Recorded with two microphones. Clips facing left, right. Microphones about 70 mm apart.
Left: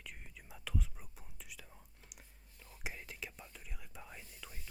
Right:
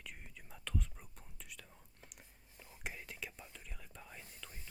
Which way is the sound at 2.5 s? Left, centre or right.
Centre.